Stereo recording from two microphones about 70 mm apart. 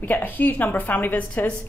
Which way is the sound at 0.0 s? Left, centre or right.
Left.